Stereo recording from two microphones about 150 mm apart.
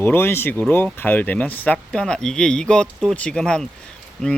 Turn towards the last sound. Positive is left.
turn(degrees=5)  # may be behind; listen again after turning